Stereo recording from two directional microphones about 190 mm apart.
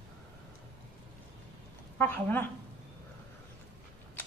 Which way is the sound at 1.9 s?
10° left (ahead or behind).